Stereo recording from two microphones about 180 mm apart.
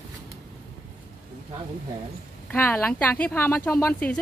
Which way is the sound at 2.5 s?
10° left (ahead or behind).